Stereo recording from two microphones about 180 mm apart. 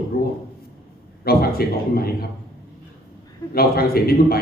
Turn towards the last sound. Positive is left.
turn(degrees=55)  # may be behind; listen again after turning